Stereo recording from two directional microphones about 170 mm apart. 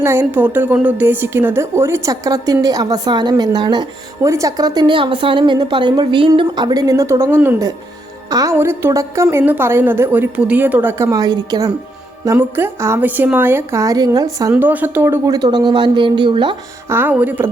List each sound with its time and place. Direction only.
0.0 s a woman's voice: 15° right (ahead or behind)
14.5 s a woman's voice: 10° right (ahead or behind); by 16.6 s 30° right (ahead or behind)
16.9 s a woman's voice: 10° right (ahead or behind)